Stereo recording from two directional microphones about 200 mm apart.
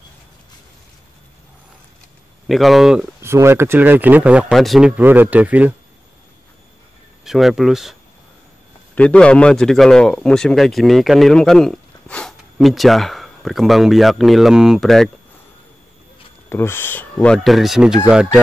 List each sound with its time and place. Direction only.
2.4 s a man's voice: centre (ahead or behind)
3.2 s speech: 15° right (ahead or behind)
7.2 s a man's voice: centre (ahead or behind)
8.9 s a man's voice: 5° left (ahead or behind)
16.4 s a man's voice: 10° left (ahead or behind); by 18.4 s 5° right (ahead or behind)